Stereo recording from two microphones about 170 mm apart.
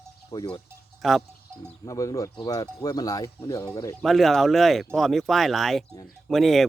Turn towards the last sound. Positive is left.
turn(degrees=0)  # may be behind; listen again after turning